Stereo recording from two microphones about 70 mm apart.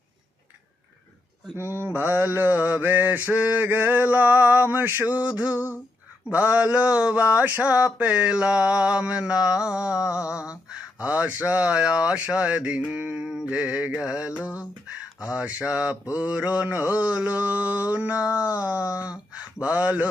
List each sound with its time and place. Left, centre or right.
1.5 s mantra: right; by 7.9 s centre
7.9 s speech: centre
16.1 s mantra: centre
18.6 s speech: centre